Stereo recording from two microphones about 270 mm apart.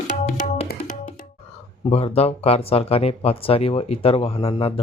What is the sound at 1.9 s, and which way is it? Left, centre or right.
Speech, left.